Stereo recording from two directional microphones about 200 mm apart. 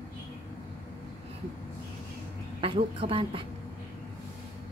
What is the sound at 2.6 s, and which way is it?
Speech, 25° right (ahead or behind).